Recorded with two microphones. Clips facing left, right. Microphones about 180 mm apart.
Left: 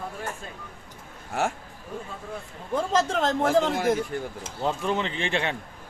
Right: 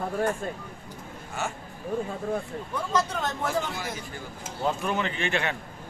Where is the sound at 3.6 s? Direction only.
75° left (ahead or behind); by 4.0 s 55° left (ahead or behind).